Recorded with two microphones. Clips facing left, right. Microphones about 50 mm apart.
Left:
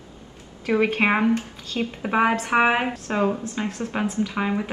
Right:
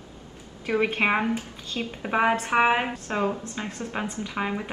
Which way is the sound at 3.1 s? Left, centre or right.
Left.